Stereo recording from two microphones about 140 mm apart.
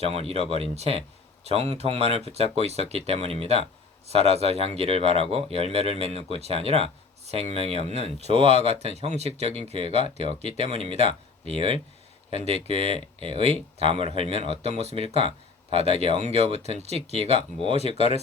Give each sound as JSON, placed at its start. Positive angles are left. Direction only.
{"t": 0.0, "sound": "speech", "side_deg": -45}
{"t": 17.7, "sound": "speech", "side_deg": 50}